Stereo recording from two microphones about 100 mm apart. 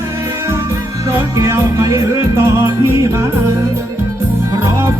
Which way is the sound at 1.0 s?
30° right (ahead or behind).